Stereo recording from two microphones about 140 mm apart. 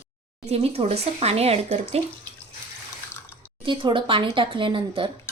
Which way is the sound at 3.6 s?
35° right (ahead or behind).